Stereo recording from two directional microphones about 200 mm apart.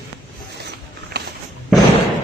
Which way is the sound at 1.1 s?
55° right (ahead or behind).